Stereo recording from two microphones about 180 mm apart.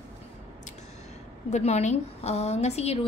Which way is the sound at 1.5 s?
40° left (ahead or behind).